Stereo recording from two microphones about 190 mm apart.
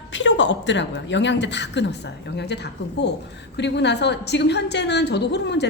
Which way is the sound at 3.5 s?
65° left (ahead or behind).